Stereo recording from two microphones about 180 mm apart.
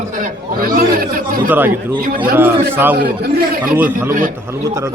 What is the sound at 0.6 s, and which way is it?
Speech, 55° right (ahead or behind).